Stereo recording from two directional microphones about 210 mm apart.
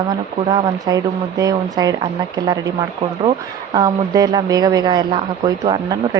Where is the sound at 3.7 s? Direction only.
20° right (ahead or behind).